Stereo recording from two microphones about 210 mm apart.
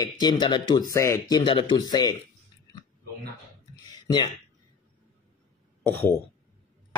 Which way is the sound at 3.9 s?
20° left (ahead or behind).